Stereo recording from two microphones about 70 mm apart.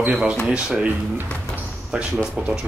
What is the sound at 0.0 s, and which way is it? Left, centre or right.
Speech, right.